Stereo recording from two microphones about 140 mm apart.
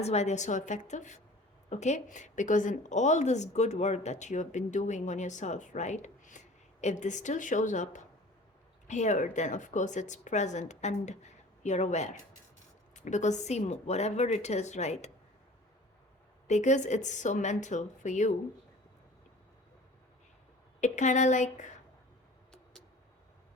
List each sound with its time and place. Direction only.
0.0 s a woman's voice: 50° left (ahead or behind)
16.5 s a woman's voice: 55° left (ahead or behind)
20.8 s a woman's voice: 60° left (ahead or behind)